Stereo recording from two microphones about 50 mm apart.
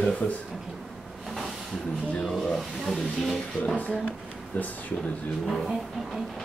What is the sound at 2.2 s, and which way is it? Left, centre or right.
Speech, centre.